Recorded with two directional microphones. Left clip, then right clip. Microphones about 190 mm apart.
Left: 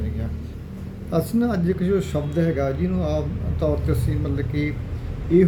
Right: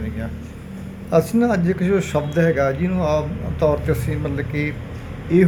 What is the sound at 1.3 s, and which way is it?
A man's voice, 15° left (ahead or behind).